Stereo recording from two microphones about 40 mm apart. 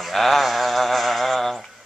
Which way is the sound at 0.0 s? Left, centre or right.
Centre.